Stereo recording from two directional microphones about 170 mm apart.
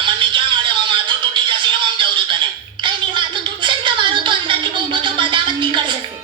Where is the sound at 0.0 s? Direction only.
30° right (ahead or behind).